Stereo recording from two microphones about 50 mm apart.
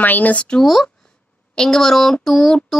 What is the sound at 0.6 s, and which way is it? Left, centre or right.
Speech, centre.